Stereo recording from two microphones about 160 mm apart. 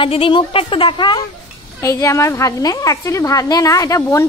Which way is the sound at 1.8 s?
20° left (ahead or behind).